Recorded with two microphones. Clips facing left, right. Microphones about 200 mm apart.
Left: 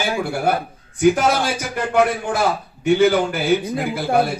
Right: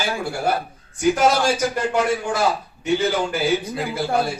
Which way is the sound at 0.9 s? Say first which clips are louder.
Left 2 dB; 55° left (ahead or behind).